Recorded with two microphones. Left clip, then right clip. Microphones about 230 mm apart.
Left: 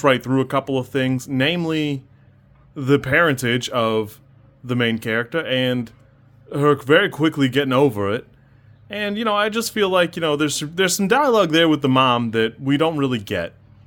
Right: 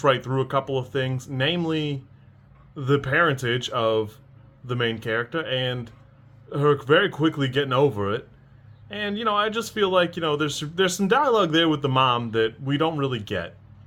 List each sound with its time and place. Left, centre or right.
0.0 s speech: left